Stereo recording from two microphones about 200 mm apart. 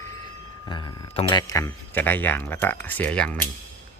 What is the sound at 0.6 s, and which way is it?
Speech, 20° left (ahead or behind).